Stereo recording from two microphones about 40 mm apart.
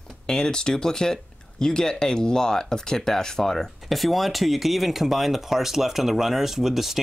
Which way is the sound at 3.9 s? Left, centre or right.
Centre.